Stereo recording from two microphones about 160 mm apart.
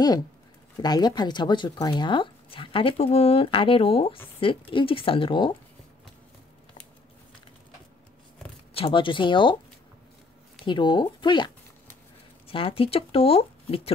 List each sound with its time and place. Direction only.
0.8 s speech: 25° left (ahead or behind)
8.7 s speech: 30° left (ahead or behind)
10.6 s speech: 30° left (ahead or behind)